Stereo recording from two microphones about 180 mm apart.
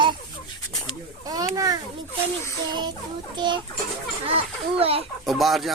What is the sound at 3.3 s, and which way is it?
Speech, 25° right (ahead or behind).